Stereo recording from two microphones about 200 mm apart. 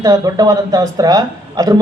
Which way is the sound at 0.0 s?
15° right (ahead or behind).